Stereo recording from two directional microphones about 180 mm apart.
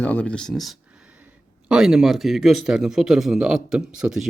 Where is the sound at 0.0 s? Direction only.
10° left (ahead or behind).